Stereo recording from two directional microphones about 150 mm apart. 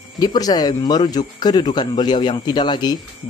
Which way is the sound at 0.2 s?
25° left (ahead or behind).